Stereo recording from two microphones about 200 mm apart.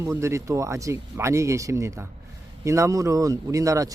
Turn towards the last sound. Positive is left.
turn(degrees=-15)  # may be behind; listen again after turning